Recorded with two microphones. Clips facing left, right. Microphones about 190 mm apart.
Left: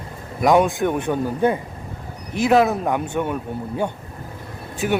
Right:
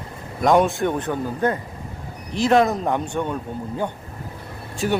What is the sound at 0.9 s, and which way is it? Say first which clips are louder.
Speech: left 3 dB; 15° left (ahead or behind).